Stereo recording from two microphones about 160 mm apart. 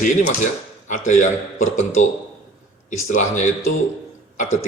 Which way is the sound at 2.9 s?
50° left (ahead or behind).